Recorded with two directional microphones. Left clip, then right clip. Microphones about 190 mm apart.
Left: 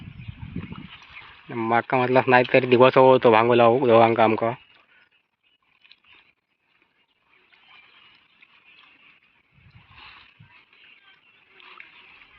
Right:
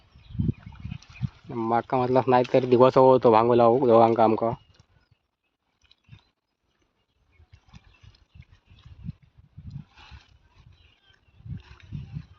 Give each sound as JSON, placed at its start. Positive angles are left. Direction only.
{"t": 1.5, "sound": "speech", "side_deg": -10}